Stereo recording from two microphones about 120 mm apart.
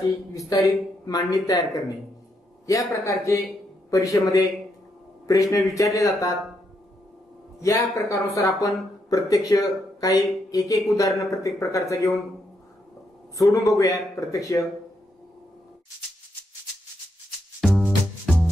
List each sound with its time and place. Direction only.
0.5 s a man's voice: 30° left (ahead or behind)
7.6 s speech: 25° left (ahead or behind)
13.5 s speech: 25° left (ahead or behind)
17.6 s music: centre (ahead or behind)